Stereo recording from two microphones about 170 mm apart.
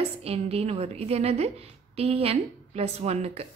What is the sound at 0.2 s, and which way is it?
A woman's voice, 35° right (ahead or behind).